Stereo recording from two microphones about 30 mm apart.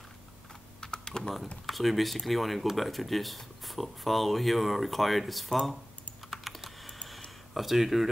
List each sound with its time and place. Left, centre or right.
0.7 s typing: left
1.7 s speech: centre
6.3 s computer keyboard: centre
7.5 s speech: centre